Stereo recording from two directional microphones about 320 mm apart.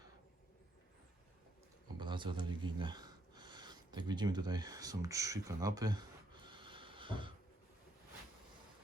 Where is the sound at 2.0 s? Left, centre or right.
Centre.